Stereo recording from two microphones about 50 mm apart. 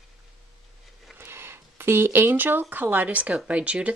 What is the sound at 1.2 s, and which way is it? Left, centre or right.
Speech, right.